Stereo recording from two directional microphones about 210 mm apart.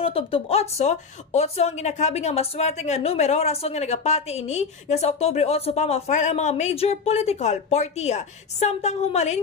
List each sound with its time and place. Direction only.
0.0 s speech: 25° left (ahead or behind)